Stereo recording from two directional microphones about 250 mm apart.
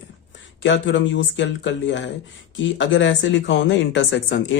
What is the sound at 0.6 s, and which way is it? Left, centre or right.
Speech, left.